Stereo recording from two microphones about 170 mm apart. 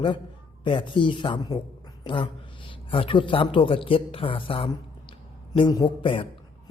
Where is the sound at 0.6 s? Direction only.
30° left (ahead or behind).